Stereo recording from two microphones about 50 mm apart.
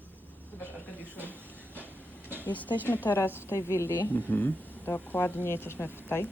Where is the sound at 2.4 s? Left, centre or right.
Left.